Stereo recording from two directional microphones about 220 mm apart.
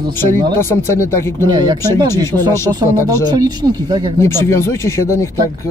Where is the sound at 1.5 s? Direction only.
20° right (ahead or behind).